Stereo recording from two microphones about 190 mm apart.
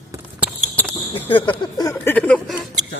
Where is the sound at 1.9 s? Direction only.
10° left (ahead or behind).